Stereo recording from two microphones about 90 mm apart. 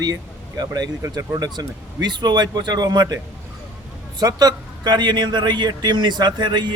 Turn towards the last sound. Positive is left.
turn(degrees=-55)  # may be behind; listen again after turning